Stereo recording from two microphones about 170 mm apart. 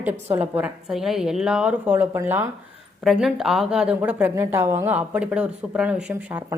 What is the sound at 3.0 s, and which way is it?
A woman's voice, centre (ahead or behind).